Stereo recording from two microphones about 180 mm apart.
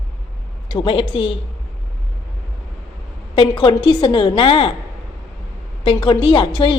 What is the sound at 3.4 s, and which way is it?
A woman's voice, 25° left (ahead or behind).